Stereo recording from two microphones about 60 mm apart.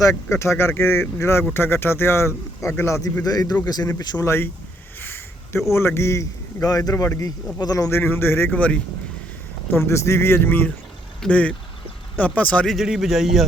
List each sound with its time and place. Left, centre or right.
0.0 s a man's voice: left
3.2 s a man's voice: left
4.9 s a sound: left
5.7 s a man's voice: left
6.9 s a man's voice: left
7.9 s a man's voice: left
8.4 s speech: left
9.7 s speech: left
11.3 s speech: left
12.6 s a man's voice: centre